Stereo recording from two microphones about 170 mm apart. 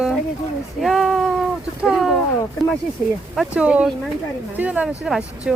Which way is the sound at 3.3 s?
5° right (ahead or behind).